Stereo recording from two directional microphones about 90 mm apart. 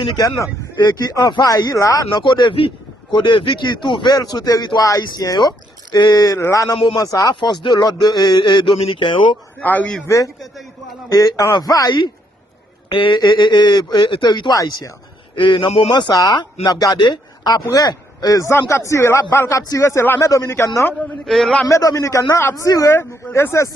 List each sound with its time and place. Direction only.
0.2 s speech: 35° left (ahead or behind)
0.8 s a man's voice: 50° left (ahead or behind)
2.2 s a man's voice: 60° left (ahead or behind)
4.1 s a man's voice: 45° left (ahead or behind)
6.3 s a man's voice: 35° left (ahead or behind); by 9.1 s 65° left (ahead or behind)
9.6 s a man's voice: 15° left (ahead or behind)
11.1 s a man's voice: 45° left (ahead or behind)
12.9 s speech: 70° left (ahead or behind)
13.1 s a man's voice: 55° left (ahead or behind)
14.5 s speech: 40° left (ahead or behind)
15.4 s a man's voice: 65° left (ahead or behind)
15.6 s a man's voice: 50° left (ahead or behind); by 20.7 s 30° left (ahead or behind)
21.2 s a man's voice: 5° left (ahead or behind)
21.7 s speech: 40° left (ahead or behind)